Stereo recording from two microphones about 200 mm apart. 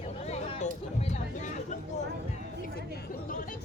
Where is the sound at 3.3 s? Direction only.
40° left (ahead or behind).